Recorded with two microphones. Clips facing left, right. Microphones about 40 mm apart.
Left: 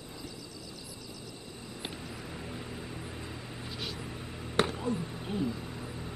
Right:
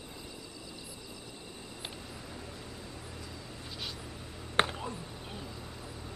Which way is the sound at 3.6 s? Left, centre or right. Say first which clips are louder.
Left 3 dB; centre.